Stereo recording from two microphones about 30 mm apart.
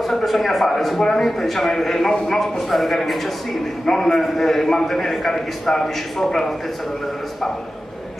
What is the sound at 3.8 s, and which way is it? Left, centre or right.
A man's voice, centre.